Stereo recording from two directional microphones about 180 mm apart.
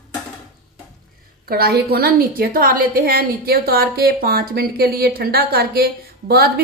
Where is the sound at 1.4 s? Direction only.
60° right (ahead or behind).